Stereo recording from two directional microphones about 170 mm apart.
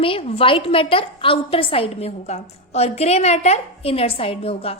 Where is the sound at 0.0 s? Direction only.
35° left (ahead or behind).